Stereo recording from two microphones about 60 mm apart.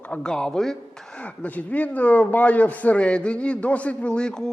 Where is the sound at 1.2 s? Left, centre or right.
Left.